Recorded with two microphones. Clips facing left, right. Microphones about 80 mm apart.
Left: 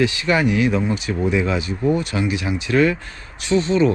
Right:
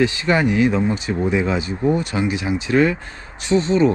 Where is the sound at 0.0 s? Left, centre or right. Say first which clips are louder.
Right 1 dB; right.